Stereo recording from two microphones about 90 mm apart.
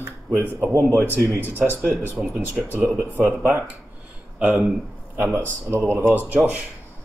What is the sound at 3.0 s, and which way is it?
Speech, 20° right (ahead or behind).